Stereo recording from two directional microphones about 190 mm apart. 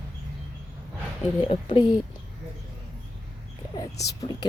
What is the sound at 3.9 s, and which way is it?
Speech, 60° left (ahead or behind).